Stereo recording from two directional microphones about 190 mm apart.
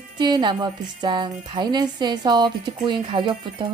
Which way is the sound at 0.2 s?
25° right (ahead or behind).